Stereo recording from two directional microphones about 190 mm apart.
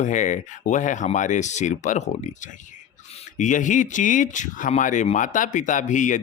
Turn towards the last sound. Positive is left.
turn(degrees=40)  # may be behind; listen again after turning